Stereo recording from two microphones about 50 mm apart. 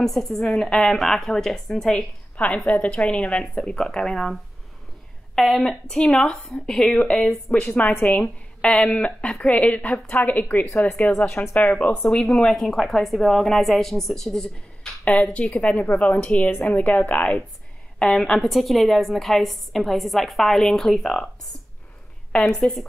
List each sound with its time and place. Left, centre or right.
0.0 s a woman's voice: centre
2.3 s a woman's voice: left
3.5 s a woman's voice: centre
6.3 s a woman's voice: centre; by 10.7 s left
10.8 s a woman's voice: left
12.4 s a woman's voice: centre
15.4 s a woman's voice: left
17.9 s a woman's voice: centre
22.6 s a woman's voice: centre